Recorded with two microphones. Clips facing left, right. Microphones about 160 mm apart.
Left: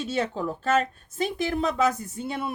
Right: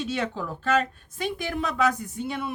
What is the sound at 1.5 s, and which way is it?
Speech, 25° left (ahead or behind).